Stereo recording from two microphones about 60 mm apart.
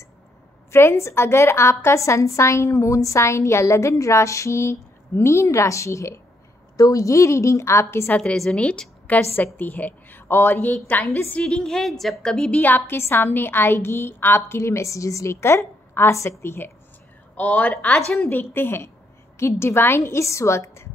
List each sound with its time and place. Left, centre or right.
0.7 s a woman's voice: left
6.8 s a woman's voice: left
8.4 s a woman's voice: centre
11.4 s a woman's voice: centre
12.4 s a woman's voice: left
12.7 s a woman's voice: left
15.4 s a woman's voice: left
17.4 s a woman's voice: left
18.3 s a woman's voice: left
20.1 s a woman's voice: left